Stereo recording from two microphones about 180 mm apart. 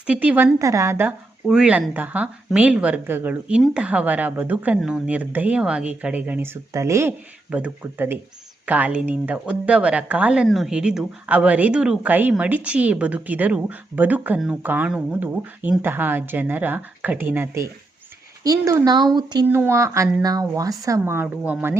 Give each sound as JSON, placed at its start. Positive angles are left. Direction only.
{"t": 0.1, "sound": "speech", "side_deg": -10}